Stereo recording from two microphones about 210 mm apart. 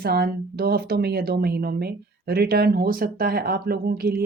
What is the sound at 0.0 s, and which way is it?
Speech, 50° right (ahead or behind).